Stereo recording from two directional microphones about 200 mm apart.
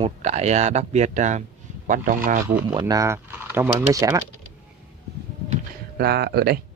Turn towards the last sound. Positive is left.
turn(degrees=-50)  # may be behind; listen again after turning